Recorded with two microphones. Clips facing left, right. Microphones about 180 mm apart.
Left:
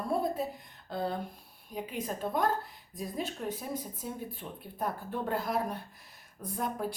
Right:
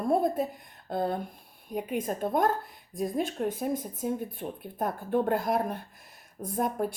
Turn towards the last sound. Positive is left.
turn(degrees=-50)  # may be behind; listen again after turning